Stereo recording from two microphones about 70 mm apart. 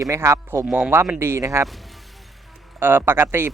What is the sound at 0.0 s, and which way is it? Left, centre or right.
Speech, right.